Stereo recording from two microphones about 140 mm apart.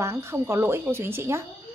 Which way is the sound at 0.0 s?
20° right (ahead or behind).